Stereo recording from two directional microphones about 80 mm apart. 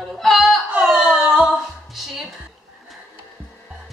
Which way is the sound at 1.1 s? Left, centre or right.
Centre.